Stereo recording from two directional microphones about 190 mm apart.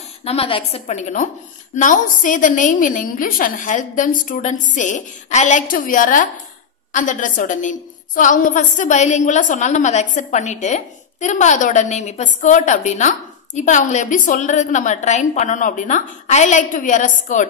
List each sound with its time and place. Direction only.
0.2 s a woman's voice: 30° left (ahead or behind)